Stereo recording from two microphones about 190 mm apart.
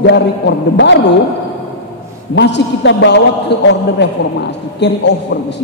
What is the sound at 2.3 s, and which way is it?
A man's voice, 65° left (ahead or behind).